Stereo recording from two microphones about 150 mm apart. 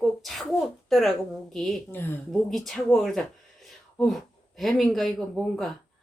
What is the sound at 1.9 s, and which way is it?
Speech, 15° left (ahead or behind).